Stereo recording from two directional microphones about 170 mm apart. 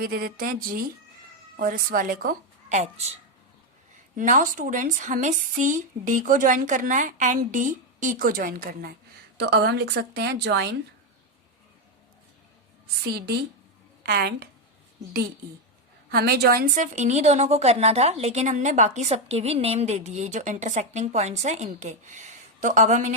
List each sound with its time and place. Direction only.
0.0 s a woman's voice: 60° right (ahead or behind)
9.4 s speech: 75° right (ahead or behind)
13.1 s a woman's voice: 70° right (ahead or behind)
16.1 s a woman's voice: 65° right (ahead or behind)
16.8 s a woman's voice: 45° right (ahead or behind)